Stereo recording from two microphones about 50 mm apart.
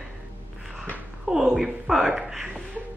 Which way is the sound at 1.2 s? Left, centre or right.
Centre.